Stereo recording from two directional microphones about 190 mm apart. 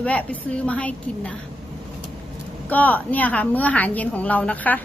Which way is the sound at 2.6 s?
10° left (ahead or behind).